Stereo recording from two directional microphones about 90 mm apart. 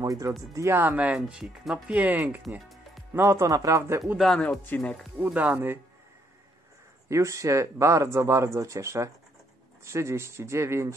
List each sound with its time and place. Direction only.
0.0 s speech: 40° right (ahead or behind)
0.7 s speech: 20° right (ahead or behind)
1.1 s speech: 5° right (ahead or behind)
3.2 s speech: 30° right (ahead or behind)
4.4 s speech: 10° left (ahead or behind)
5.2 s speech: 20° right (ahead or behind)
7.1 s speech: 35° right (ahead or behind)